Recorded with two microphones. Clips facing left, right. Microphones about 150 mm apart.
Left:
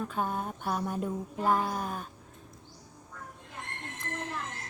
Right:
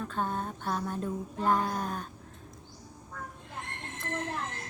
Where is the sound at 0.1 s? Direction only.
10° left (ahead or behind).